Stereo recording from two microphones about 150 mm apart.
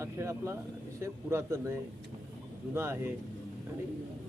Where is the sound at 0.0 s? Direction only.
20° right (ahead or behind).